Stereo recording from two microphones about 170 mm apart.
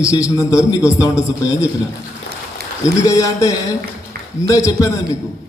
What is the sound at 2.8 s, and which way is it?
A man's voice, 20° left (ahead or behind).